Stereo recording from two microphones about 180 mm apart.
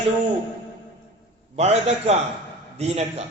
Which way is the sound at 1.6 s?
35° right (ahead or behind).